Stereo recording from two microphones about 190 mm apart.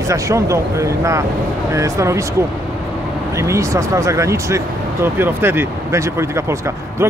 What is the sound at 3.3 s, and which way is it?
Speech, 15° right (ahead or behind).